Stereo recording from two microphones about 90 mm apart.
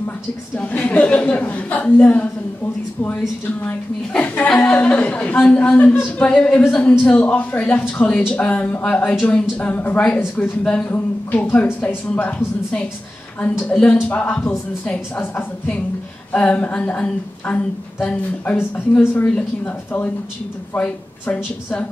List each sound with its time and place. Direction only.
0.6 s a woman's voice: 15° left (ahead or behind)
16.3 s a woman's voice: 15° left (ahead or behind)
18.6 s a woman's voice: 20° left (ahead or behind)